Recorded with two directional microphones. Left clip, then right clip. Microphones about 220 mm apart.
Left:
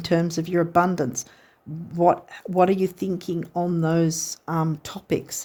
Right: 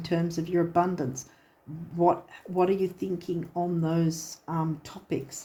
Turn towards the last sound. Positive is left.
turn(degrees=50)  # may be behind; listen again after turning